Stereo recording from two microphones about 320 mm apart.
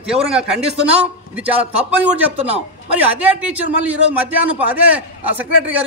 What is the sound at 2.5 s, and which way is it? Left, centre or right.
A man's voice, centre.